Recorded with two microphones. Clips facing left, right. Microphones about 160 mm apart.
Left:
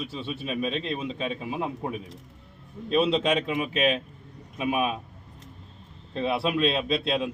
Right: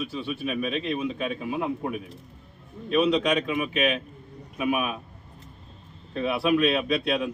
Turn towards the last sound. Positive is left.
turn(degrees=25)  # may be behind; listen again after turning